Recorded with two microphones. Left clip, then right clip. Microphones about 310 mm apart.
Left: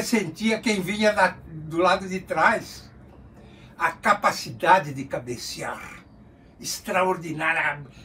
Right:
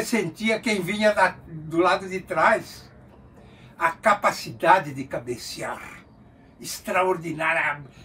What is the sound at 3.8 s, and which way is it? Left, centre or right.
A man's voice, centre.